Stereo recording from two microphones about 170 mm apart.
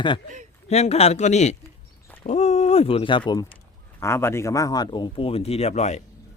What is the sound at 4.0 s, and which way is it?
Speech, 15° left (ahead or behind).